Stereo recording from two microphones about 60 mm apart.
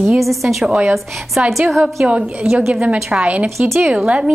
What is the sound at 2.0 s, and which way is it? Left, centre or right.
A woman's voice, centre.